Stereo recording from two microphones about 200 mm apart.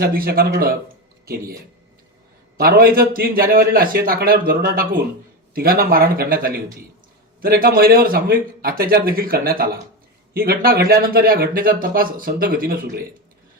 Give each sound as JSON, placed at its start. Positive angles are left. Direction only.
{"t": 0.0, "sound": "speech", "side_deg": -50}
{"t": 2.6, "sound": "speech", "side_deg": -50}